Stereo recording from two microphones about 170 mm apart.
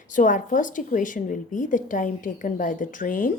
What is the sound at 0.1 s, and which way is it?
A woman's voice, 50° left (ahead or behind).